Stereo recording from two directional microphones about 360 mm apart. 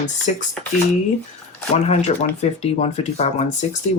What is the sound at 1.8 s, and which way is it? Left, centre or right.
Speech, centre.